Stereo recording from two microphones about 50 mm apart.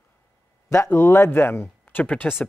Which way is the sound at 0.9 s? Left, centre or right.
Left.